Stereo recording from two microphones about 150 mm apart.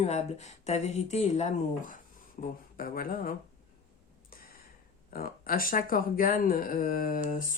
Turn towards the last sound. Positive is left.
turn(degrees=60)  # may be behind; listen again after turning